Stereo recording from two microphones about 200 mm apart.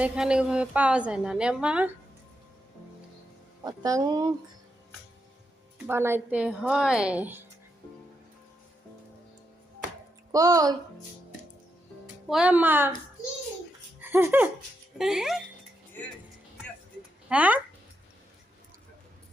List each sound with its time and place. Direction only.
0.0 s a woman's voice: 5° right (ahead or behind)
3.6 s speech: 15° right (ahead or behind)
5.9 s a woman's voice: 10° right (ahead or behind)
10.3 s a woman's voice: 15° right (ahead or behind)
12.3 s a woman's voice: 5° right (ahead or behind)
14.0 s laughter: 10° right (ahead or behind)
14.9 s a woman's voice: centre (ahead or behind)
17.2 s speech: 5° right (ahead or behind)